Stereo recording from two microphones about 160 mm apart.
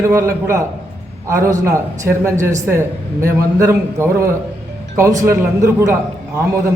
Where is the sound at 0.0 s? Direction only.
20° right (ahead or behind).